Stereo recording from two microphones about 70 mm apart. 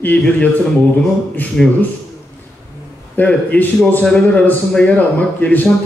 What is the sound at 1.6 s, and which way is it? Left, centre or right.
Speech, centre.